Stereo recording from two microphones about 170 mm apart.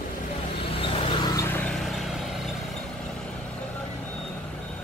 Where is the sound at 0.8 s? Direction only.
35° left (ahead or behind).